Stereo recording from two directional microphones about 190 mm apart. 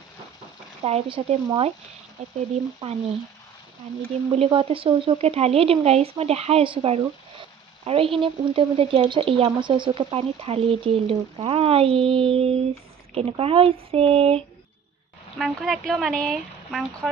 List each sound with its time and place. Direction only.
0.8 s speech: 30° right (ahead or behind)
2.8 s speech: 25° right (ahead or behind)
4.4 s speech: 30° right (ahead or behind)
15.3 s speech: centre (ahead or behind)